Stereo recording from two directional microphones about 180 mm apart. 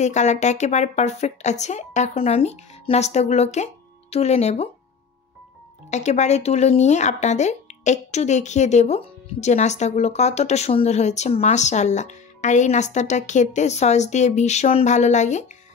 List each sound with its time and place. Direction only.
0.0 s speech: 40° left (ahead or behind)
5.9 s speech: 40° left (ahead or behind)